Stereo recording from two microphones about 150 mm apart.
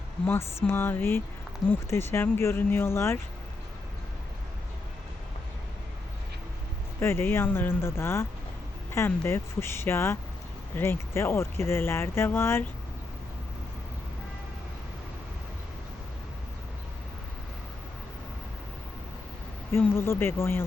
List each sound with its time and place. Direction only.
0.3 s speech: 15° left (ahead or behind)
7.0 s speech: 15° left (ahead or behind)
19.7 s speech: 15° left (ahead or behind)